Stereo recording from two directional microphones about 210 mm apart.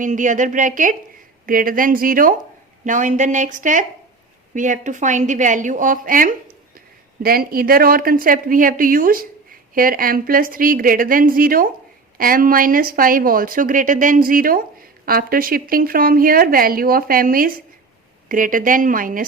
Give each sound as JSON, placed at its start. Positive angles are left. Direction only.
{"t": 0.0, "sound": "a woman's voice", "side_deg": -35}